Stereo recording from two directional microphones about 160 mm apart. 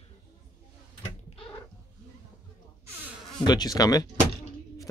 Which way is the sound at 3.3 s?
25° left (ahead or behind).